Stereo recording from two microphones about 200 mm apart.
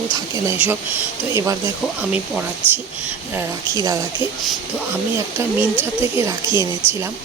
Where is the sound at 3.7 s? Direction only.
15° right (ahead or behind).